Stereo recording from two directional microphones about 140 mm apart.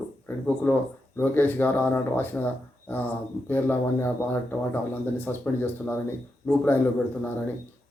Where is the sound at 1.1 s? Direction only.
15° left (ahead or behind).